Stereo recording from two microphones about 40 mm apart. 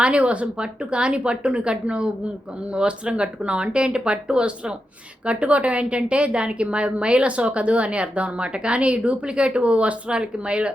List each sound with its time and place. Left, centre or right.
0.0 s a woman's voice: right